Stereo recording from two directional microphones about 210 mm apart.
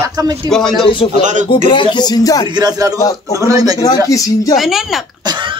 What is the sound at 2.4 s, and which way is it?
Speech, 20° right (ahead or behind).